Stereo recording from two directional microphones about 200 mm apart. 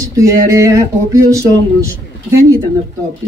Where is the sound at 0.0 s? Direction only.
15° right (ahead or behind).